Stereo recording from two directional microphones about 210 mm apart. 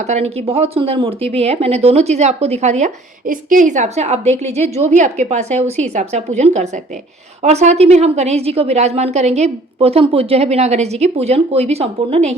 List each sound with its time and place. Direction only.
0.1 s a woman's voice: 30° right (ahead or behind)